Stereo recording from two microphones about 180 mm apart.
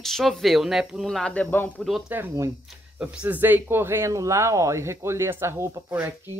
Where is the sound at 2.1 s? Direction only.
10° right (ahead or behind).